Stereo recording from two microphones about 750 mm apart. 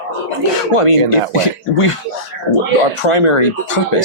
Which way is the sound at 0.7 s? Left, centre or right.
Left.